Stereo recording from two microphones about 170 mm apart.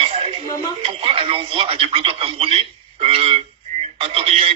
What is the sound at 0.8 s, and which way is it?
Speech, 35° right (ahead or behind).